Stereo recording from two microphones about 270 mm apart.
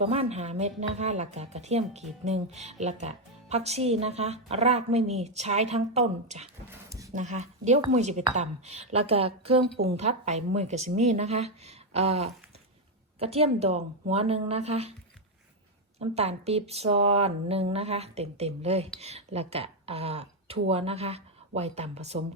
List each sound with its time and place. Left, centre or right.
0.0 s speech: right
16.0 s speech: right